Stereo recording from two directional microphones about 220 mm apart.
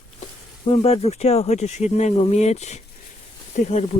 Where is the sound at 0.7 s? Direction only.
30° left (ahead or behind).